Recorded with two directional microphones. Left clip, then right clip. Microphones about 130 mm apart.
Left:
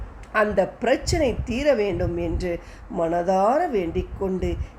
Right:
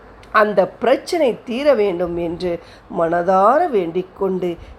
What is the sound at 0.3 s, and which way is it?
A woman's voice, 15° right (ahead or behind).